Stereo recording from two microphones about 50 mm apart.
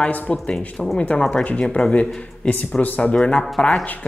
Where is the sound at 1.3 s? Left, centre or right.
Left.